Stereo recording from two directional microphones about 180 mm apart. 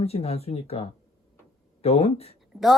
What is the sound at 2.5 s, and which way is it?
Speech, centre (ahead or behind).